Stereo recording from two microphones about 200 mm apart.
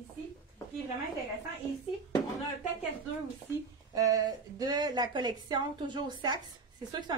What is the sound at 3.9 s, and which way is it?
A woman's voice, 20° right (ahead or behind).